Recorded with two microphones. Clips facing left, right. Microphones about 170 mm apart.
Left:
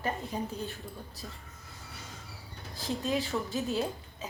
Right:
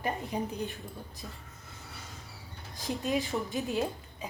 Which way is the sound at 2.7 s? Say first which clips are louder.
Even; 15° right (ahead or behind).